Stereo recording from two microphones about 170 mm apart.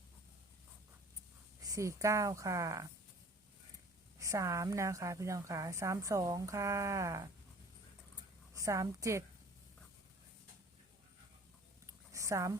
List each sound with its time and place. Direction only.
1.6 s a woman's voice: 20° right (ahead or behind)
4.2 s a woman's voice: 20° right (ahead or behind)
8.5 s a woman's voice: 20° right (ahead or behind)
11.9 s a sound: 20° right (ahead or behind)